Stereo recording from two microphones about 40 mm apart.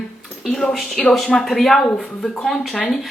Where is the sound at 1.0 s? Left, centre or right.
Centre.